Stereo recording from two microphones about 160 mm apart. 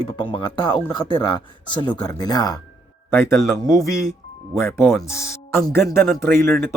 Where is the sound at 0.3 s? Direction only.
30° left (ahead or behind).